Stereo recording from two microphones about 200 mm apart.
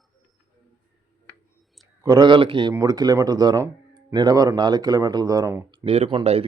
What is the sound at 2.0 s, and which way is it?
Speech, 20° right (ahead or behind).